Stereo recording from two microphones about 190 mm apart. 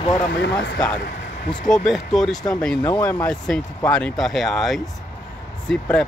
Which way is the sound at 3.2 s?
5° left (ahead or behind).